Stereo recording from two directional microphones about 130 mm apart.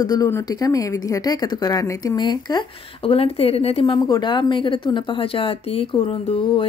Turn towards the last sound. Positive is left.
turn(degrees=45)  # may be behind; listen again after turning